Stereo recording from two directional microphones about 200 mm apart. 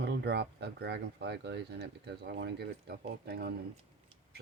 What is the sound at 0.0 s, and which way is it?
Speech, 55° right (ahead or behind).